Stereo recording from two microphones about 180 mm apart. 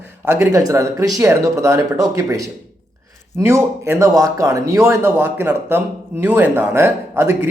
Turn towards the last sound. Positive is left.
turn(degrees=-15)  # may be behind; listen again after turning